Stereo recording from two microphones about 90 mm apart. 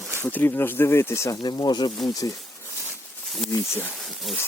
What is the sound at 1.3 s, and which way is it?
Speech, 45° left (ahead or behind).